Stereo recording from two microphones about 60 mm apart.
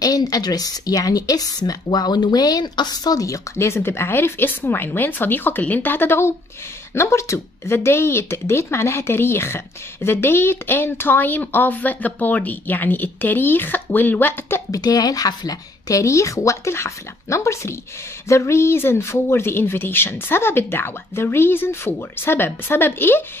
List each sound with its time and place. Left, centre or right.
0.0 s a woman's voice: left
3.5 s speech: left
14.7 s speech: left